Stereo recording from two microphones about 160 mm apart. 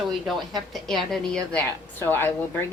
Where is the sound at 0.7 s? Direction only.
Centre (ahead or behind).